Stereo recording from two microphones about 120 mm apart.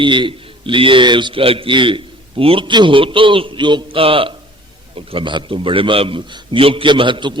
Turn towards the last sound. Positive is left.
turn(degrees=-40)  # may be behind; listen again after turning